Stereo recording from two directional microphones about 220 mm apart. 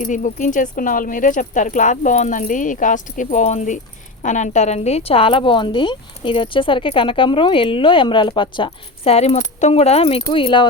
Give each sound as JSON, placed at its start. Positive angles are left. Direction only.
{"t": 0.0, "sound": "a woman's voice", "side_deg": 35}